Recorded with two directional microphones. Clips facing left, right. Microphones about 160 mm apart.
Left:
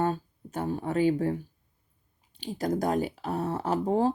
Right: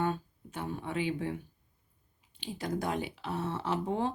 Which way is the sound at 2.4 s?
40° left (ahead or behind).